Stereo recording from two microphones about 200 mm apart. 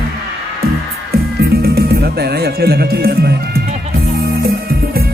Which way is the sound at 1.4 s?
50° right (ahead or behind).